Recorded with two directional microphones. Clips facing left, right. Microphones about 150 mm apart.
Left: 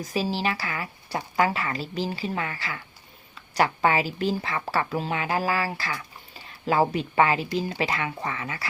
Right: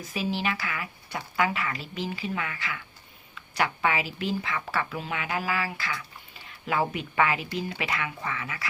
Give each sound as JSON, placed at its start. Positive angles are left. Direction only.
{"t": 0.0, "sound": "speech", "side_deg": 35}